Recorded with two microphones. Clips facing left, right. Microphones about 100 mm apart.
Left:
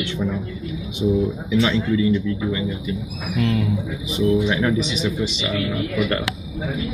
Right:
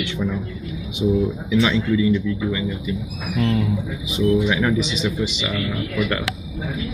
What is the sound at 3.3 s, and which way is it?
Speech, 30° right (ahead or behind).